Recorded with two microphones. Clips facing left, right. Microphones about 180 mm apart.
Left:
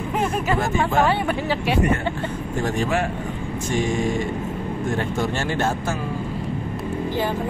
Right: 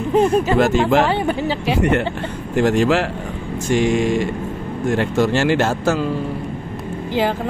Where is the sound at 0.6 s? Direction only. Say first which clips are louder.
Right 5 dB; 75° right (ahead or behind).